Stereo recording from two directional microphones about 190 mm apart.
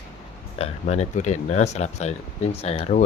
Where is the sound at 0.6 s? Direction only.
35° left (ahead or behind).